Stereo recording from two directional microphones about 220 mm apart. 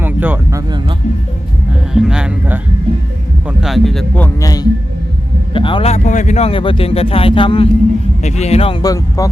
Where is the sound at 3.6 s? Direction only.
Centre (ahead or behind).